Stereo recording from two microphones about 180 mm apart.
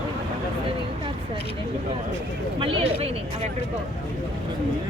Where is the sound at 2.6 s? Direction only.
30° right (ahead or behind).